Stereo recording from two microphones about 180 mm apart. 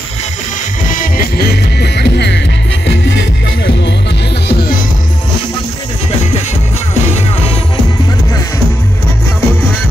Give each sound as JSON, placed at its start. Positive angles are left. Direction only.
{"t": 0.8, "sound": "music", "side_deg": 50}
{"t": 4.5, "sound": "music", "side_deg": 60}
{"t": 6.9, "sound": "music", "side_deg": 35}